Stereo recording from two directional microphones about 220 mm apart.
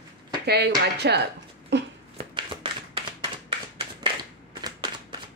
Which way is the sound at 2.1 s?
20° right (ahead or behind).